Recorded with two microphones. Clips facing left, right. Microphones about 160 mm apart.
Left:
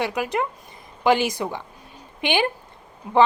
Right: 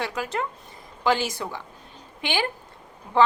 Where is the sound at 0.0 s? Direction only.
15° left (ahead or behind).